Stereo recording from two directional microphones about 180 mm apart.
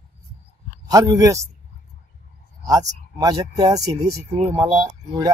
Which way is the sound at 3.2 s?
20° right (ahead or behind).